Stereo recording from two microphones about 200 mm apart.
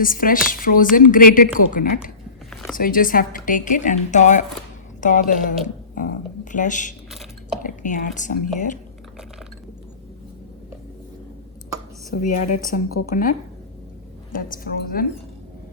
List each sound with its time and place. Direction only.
0.0 s a woman's voice: 45° left (ahead or behind)
2.5 s a sound: centre (ahead or behind)
2.7 s speech: 45° left (ahead or behind)
12.6 s a woman's voice: 45° left (ahead or behind)
14.3 s a woman's voice: 45° left (ahead or behind)